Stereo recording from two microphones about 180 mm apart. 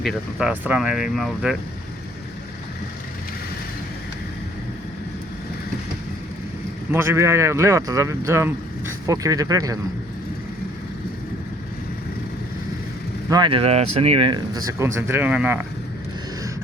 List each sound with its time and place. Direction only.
0.0 s speech: centre (ahead or behind)
6.9 s speech: 15° right (ahead or behind)
13.3 s speech: 30° right (ahead or behind); by 15.6 s 10° right (ahead or behind)